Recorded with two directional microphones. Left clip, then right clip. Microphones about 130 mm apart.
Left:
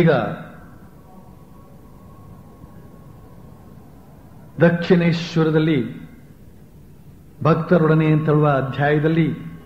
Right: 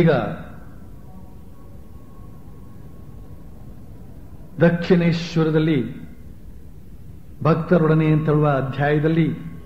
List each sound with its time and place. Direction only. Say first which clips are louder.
0.0 s a man's voice: left 1 dB; 35° right (ahead or behind)
4.6 s a man's voice: left 1 dB; 35° right (ahead or behind)
7.4 s a man's voice: left 1 dB; 30° right (ahead or behind)